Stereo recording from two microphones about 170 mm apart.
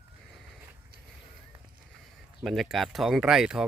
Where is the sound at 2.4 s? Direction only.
Centre (ahead or behind).